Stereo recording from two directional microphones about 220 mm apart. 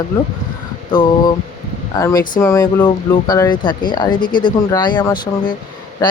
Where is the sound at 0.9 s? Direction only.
20° left (ahead or behind).